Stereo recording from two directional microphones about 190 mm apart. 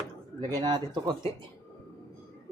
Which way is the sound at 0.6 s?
25° right (ahead or behind).